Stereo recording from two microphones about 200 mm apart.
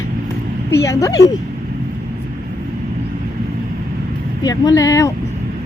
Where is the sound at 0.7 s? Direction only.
15° left (ahead or behind).